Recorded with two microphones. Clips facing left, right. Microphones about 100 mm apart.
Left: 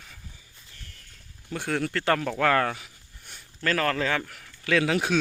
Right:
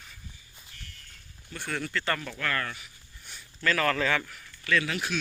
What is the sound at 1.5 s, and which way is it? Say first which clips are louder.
Speech: left 6 dB; 90° left.